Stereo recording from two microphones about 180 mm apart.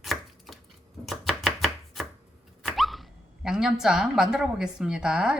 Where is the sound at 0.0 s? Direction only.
Centre (ahead or behind).